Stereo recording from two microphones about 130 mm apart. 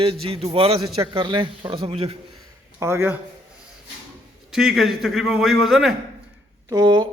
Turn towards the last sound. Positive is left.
turn(degrees=-35)  # may be behind; listen again after turning